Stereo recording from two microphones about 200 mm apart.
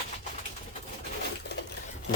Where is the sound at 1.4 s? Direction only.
55° left (ahead or behind).